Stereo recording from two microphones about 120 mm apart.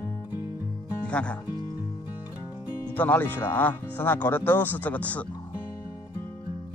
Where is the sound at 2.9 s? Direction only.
15° left (ahead or behind).